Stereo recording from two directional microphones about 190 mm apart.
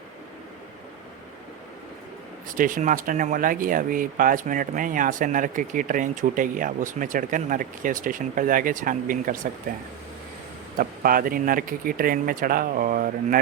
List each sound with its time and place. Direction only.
2.5 s speech: 45° right (ahead or behind)
10.8 s speech: 50° right (ahead or behind)